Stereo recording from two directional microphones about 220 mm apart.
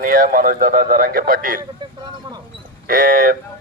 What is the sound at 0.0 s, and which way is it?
Speech, 40° right (ahead or behind).